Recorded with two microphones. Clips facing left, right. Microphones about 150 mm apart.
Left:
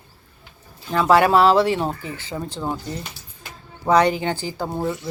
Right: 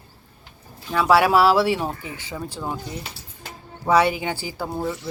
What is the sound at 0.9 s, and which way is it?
Speech, 5° right (ahead or behind).